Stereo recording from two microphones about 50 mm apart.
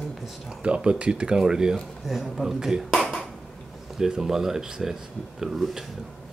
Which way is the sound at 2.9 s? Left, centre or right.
Centre.